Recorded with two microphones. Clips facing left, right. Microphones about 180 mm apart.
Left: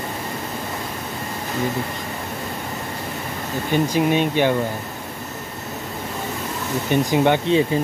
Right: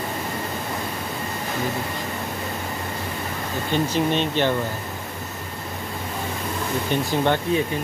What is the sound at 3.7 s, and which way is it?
Speech, 10° left (ahead or behind).